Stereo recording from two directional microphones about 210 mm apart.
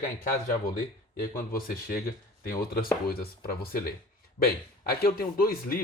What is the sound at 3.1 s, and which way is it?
Speech, 45° left (ahead or behind).